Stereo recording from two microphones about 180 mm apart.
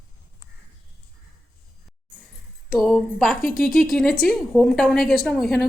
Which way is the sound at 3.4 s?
50° left (ahead or behind).